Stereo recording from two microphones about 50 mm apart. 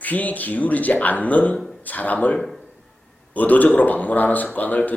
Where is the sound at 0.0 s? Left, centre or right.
Left.